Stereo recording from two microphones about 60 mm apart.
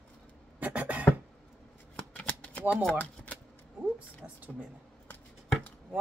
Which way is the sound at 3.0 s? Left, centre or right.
Left.